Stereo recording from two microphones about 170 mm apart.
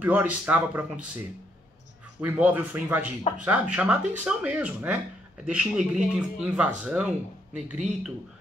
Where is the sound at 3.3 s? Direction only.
35° left (ahead or behind).